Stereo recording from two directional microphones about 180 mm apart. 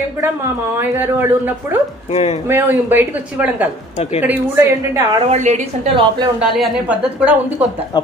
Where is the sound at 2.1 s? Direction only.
35° left (ahead or behind).